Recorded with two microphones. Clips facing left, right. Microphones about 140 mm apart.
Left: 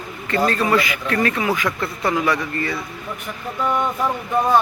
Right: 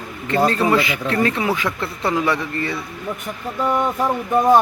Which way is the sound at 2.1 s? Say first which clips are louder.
Even; 25° right (ahead or behind).